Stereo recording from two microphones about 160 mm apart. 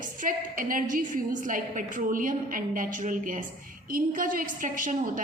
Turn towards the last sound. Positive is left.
turn(degrees=-55)  # may be behind; listen again after turning